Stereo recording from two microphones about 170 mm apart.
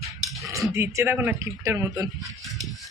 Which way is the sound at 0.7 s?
15° right (ahead or behind).